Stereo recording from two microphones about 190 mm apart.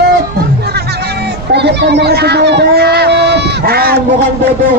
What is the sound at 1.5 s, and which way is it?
Speech, 60° right (ahead or behind).